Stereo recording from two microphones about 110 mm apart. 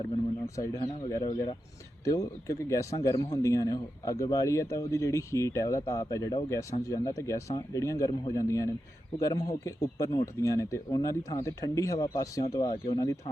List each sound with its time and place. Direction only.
0.4 s speech: 30° left (ahead or behind)
1.0 s speech: 45° left (ahead or behind)
2.0 s speech: 30° left (ahead or behind)